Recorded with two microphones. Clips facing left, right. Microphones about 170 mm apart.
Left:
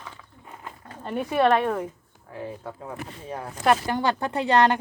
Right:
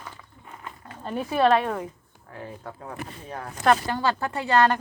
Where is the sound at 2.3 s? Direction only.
20° left (ahead or behind).